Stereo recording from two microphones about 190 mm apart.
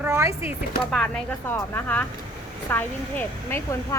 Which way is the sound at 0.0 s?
15° right (ahead or behind).